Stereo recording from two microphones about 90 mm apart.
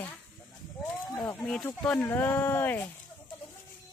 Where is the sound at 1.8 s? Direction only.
20° left (ahead or behind).